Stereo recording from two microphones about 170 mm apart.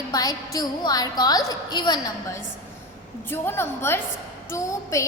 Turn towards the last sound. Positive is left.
turn(degrees=20)  # may be behind; listen again after turning